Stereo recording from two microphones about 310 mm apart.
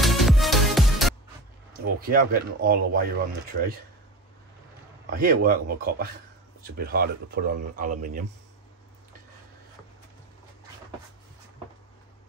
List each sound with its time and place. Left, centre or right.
0.0 s music: centre
2.0 s speech: right
5.1 s speech: right